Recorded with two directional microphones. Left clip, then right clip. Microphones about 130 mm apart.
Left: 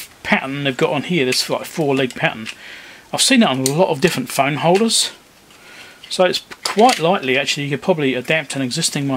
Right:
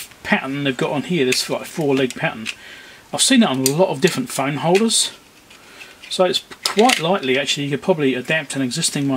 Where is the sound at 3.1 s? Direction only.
20° left (ahead or behind).